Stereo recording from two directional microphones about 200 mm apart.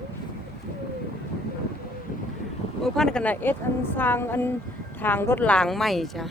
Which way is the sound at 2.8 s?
5° left (ahead or behind).